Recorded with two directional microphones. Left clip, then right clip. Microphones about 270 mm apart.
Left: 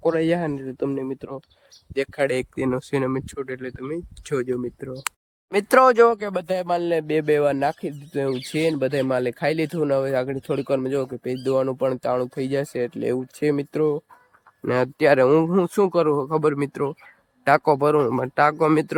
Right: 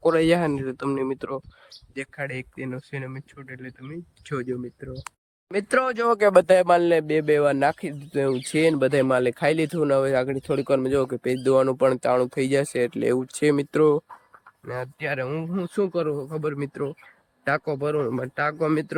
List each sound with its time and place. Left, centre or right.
0.0 s speech: centre
2.0 s speech: centre
6.1 s speech: centre
14.9 s speech: centre